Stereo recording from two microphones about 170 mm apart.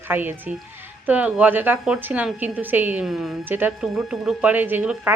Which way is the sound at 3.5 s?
10° right (ahead or behind).